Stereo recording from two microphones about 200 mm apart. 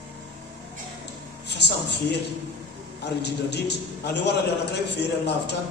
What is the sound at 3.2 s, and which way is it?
A man's voice, 55° left (ahead or behind).